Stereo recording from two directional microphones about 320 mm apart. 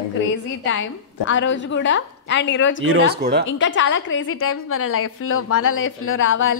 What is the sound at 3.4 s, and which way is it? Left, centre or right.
A woman's voice, left.